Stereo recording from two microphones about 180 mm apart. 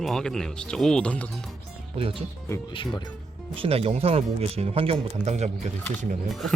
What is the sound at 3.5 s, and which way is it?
Speech, 30° right (ahead or behind).